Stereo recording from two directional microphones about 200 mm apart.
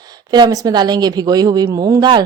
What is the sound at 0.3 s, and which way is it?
Speech, 20° right (ahead or behind).